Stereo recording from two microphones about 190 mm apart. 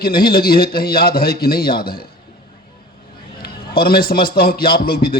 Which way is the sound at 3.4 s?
50° left (ahead or behind).